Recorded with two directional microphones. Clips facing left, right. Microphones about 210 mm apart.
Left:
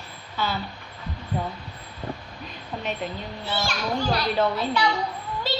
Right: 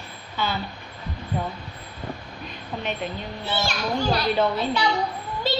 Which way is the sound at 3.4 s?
25° right (ahead or behind).